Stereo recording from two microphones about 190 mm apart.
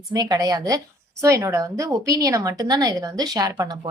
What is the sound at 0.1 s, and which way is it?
A woman's voice, 20° right (ahead or behind).